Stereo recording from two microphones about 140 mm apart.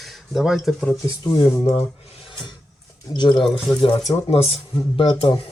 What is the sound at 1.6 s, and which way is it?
Speech, 45° left (ahead or behind).